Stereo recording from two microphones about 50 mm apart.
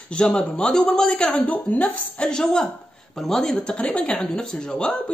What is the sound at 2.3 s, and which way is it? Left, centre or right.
Speech, centre.